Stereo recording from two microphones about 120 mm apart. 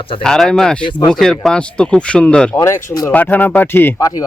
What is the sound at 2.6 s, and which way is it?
Speech, 30° left (ahead or behind).